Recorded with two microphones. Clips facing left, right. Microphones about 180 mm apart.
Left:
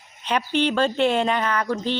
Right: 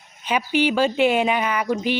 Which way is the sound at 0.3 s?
5° right (ahead or behind).